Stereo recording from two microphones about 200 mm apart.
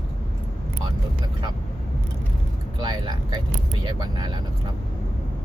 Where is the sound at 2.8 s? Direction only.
20° right (ahead or behind).